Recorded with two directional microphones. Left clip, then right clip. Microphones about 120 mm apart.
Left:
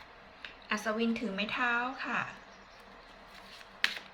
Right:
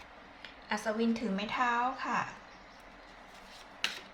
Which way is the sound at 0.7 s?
25° right (ahead or behind).